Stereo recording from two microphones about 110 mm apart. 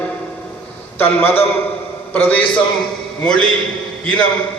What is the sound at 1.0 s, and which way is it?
A man's voice, 20° left (ahead or behind).